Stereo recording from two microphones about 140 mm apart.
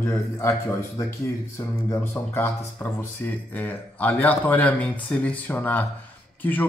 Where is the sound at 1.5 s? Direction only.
20° left (ahead or behind).